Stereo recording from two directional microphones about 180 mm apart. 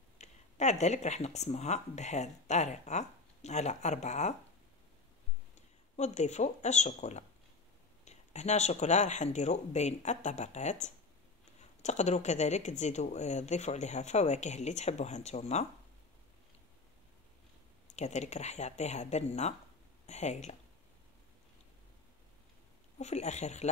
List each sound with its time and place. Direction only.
0.2 s speech: 40° left (ahead or behind)
5.9 s speech: 40° left (ahead or behind)
17.9 s speech: 40° left (ahead or behind)
22.9 s speech: 40° left (ahead or behind)